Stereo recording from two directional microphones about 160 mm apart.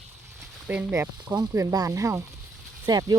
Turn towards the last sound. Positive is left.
turn(degrees=-25)  # may be behind; listen again after turning